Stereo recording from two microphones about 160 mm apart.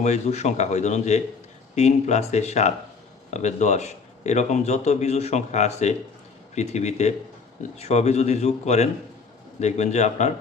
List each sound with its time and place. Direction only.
0.0 s speech: 45° left (ahead or behind)